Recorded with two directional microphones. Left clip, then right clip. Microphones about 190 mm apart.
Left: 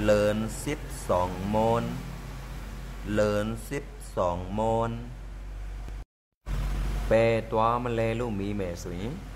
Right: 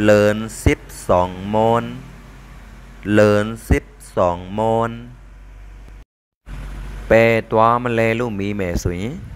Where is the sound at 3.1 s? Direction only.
35° right (ahead or behind).